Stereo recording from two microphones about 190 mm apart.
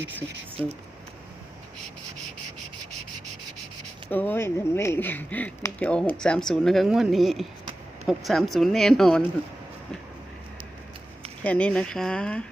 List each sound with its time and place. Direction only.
4.1 s speech: 10° left (ahead or behind)
11.4 s speech: 5° left (ahead or behind)